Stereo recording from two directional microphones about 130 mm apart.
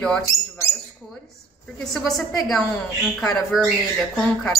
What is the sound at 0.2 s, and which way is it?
Rodents, 20° left (ahead or behind).